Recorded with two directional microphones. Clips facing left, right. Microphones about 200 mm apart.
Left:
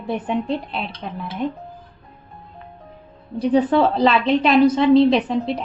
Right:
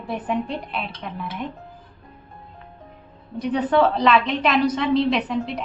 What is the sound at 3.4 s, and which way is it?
A woman's voice, 30° left (ahead or behind).